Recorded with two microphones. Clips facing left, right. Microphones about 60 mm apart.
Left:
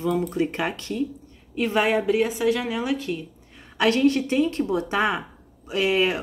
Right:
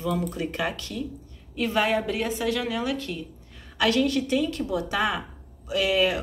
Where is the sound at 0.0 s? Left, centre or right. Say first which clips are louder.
Left 4 dB; left.